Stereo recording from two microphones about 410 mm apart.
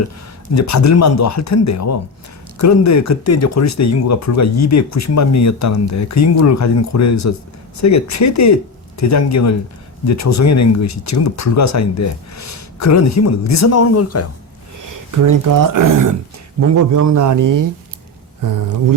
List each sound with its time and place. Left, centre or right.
0.5 s speech: left
14.8 s a man's voice: right